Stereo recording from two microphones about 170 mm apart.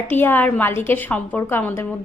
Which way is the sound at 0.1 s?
10° left (ahead or behind).